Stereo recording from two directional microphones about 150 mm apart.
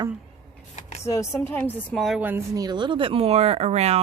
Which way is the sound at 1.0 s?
20° left (ahead or behind).